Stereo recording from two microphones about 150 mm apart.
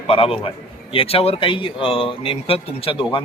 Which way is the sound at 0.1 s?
40° left (ahead or behind).